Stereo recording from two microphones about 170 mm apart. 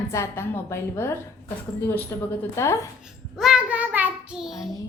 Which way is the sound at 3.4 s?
5° right (ahead or behind).